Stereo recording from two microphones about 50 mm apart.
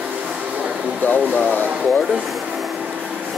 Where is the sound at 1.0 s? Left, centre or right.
Left.